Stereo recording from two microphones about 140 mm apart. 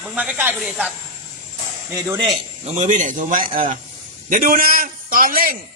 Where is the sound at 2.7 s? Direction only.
55° right (ahead or behind); by 3.8 s 75° right (ahead or behind).